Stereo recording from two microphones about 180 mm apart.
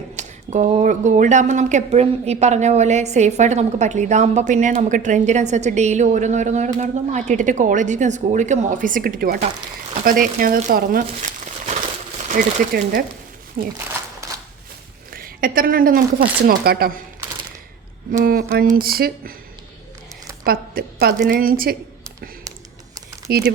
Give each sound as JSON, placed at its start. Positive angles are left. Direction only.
{"t": 0.2, "sound": "speech", "side_deg": -40}
{"t": 13.7, "sound": "a sound", "side_deg": -15}
{"t": 15.1, "sound": "a woman's voice", "side_deg": -50}
{"t": 18.1, "sound": "speech", "side_deg": -50}
{"t": 20.4, "sound": "a woman's voice", "side_deg": -55}
{"t": 23.3, "sound": "speech", "side_deg": -60}